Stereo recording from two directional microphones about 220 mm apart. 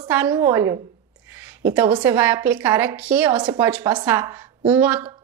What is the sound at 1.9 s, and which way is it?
Speech, 20° right (ahead or behind).